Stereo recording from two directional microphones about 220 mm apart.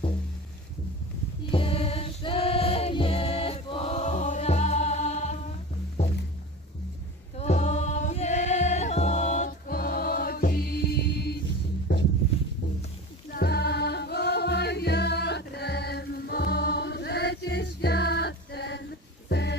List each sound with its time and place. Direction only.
1.5 s music: 25° left (ahead or behind)
7.3 s music: 30° left (ahead or behind); by 11.3 s 45° left (ahead or behind)
13.3 s music: 45° left (ahead or behind)